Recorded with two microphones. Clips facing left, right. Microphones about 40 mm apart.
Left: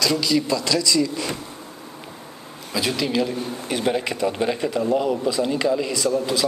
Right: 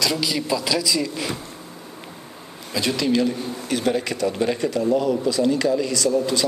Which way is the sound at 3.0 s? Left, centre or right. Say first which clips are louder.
Right 4 dB; centre.